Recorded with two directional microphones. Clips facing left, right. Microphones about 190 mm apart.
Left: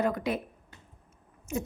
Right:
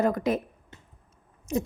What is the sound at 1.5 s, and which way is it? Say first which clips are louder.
Speech: right 5 dB; 35° right (ahead or behind).